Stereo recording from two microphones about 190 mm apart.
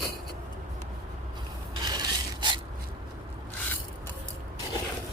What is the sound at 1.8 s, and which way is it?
Rub, 25° right (ahead or behind).